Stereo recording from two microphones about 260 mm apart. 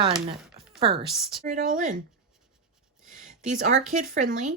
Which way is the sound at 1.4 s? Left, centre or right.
Right.